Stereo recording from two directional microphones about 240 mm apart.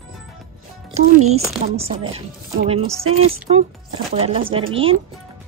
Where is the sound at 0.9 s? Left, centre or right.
Right.